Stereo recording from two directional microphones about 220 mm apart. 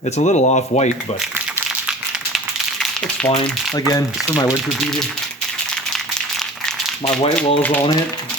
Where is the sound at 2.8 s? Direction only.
5° left (ahead or behind).